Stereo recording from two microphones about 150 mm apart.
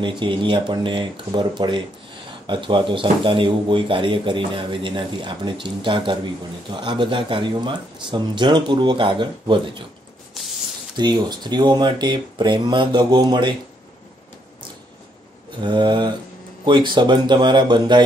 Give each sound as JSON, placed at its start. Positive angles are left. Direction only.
{"t": 0.0, "sound": "speech", "side_deg": -30}
{"t": 11.0, "sound": "speech", "side_deg": -30}
{"t": 15.6, "sound": "speech", "side_deg": -30}